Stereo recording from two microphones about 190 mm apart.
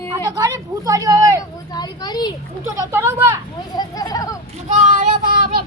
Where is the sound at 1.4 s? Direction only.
20° left (ahead or behind).